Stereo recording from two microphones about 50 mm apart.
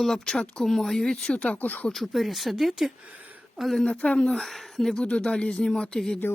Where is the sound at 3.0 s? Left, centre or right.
Right.